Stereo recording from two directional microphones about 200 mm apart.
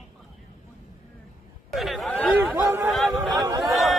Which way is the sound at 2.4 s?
10° right (ahead or behind).